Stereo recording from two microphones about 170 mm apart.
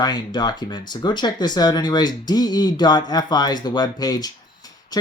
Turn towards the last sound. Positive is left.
turn(degrees=25)  # may be behind; listen again after turning